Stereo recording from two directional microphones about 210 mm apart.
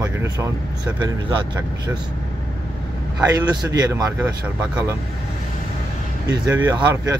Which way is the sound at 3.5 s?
15° right (ahead or behind).